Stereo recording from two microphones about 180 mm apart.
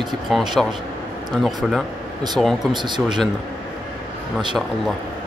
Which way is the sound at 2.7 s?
25° right (ahead or behind).